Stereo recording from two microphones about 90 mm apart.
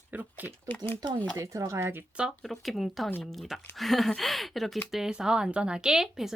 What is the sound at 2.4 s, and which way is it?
A woman's voice, centre (ahead or behind).